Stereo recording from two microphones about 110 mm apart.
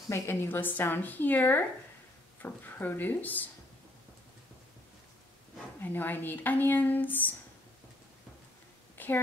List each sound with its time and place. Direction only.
0.1 s speech: 20° left (ahead or behind)
5.8 s speech: 20° left (ahead or behind)
8.9 s a sound: 20° left (ahead or behind)